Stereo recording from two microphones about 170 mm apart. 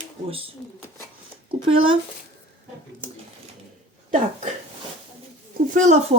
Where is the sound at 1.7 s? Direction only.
30° right (ahead or behind).